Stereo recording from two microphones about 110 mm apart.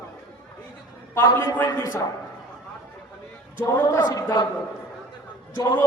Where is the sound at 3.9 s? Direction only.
35° left (ahead or behind).